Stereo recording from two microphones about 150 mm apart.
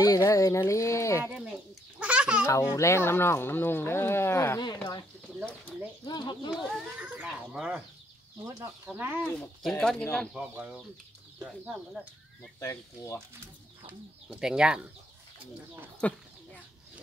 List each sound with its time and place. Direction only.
0.0 s speech: 25° left (ahead or behind)
1.2 s a child's voice: 5° right (ahead or behind)
2.0 s a sound: 10° right (ahead or behind)
2.7 s speech: 20° left (ahead or behind)
6.0 s speech: 30° left (ahead or behind)
6.5 s a child's voice: 5° right (ahead or behind)
9.3 s a child's voice: 5° left (ahead or behind)
10.3 s speech: 10° right (ahead or behind)
12.5 s speech: 20° left (ahead or behind)
14.3 s a child's voice: 5° right (ahead or behind)
16.0 s speech: 10° left (ahead or behind)